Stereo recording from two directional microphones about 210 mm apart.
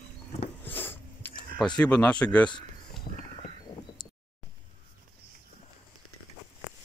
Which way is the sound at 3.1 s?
40° left (ahead or behind).